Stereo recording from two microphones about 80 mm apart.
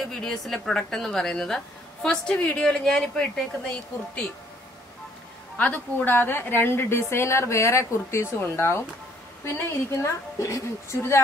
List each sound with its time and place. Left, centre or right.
0.1 s a woman's voice: centre
5.6 s a woman's voice: left